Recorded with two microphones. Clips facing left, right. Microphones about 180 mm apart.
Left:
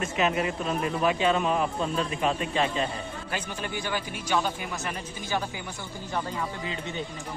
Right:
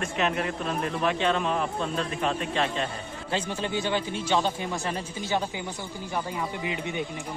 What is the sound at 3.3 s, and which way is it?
Speech, 25° right (ahead or behind).